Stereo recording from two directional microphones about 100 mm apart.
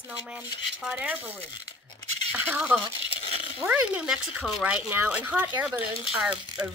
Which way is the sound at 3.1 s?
70° left (ahead or behind).